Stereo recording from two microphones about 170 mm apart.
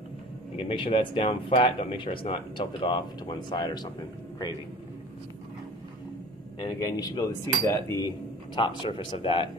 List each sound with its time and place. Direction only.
0.6 s speech: 35° left (ahead or behind)
6.6 s cutlery: 20° left (ahead or behind)
8.5 s cutlery: 30° left (ahead or behind)